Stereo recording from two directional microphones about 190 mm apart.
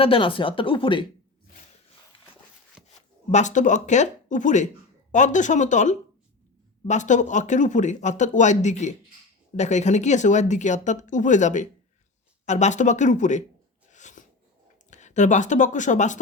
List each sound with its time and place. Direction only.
0.0 s speech: 25° left (ahead or behind)
3.3 s speech: 40° left (ahead or behind)
13.9 s a sound: 40° left (ahead or behind)
14.8 s speech: 40° left (ahead or behind)